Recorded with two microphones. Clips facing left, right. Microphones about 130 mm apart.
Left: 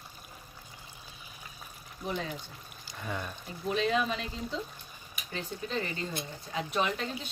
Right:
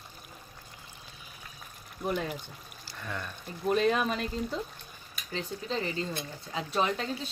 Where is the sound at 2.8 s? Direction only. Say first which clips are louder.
Left 1 dB; 15° left (ahead or behind).